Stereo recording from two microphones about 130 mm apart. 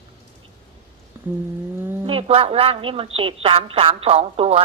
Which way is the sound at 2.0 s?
45° right (ahead or behind).